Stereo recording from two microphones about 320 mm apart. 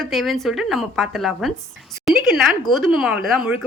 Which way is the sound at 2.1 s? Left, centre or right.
Centre.